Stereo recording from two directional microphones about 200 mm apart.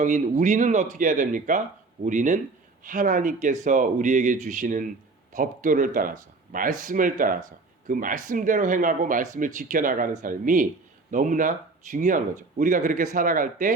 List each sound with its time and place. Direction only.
0.0 s speech: 40° right (ahead or behind)